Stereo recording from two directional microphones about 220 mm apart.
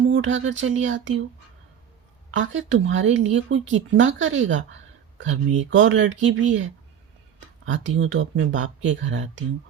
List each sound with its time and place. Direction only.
0.1 s speech: 60° right (ahead or behind)
2.3 s speech: 60° right (ahead or behind)
3.6 s speech: 30° right (ahead or behind)
3.9 s speech: 60° right (ahead or behind)